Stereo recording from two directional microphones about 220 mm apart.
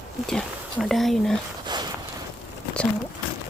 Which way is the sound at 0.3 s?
Centre (ahead or behind).